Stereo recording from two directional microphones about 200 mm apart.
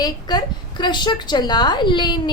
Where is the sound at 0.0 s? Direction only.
20° left (ahead or behind).